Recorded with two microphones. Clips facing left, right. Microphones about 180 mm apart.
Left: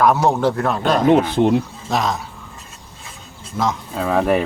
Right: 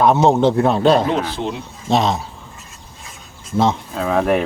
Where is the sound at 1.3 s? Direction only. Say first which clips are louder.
Left 8 dB; 55° left (ahead or behind).